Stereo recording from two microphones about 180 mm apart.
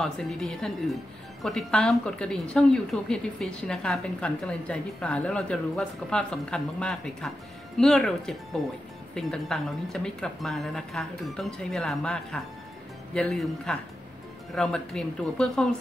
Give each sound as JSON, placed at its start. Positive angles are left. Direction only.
{"t": 0.0, "sound": "a woman's voice", "side_deg": 0}